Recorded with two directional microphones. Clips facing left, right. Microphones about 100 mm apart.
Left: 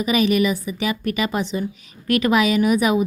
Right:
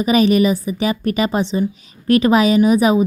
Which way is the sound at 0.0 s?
35° right (ahead or behind).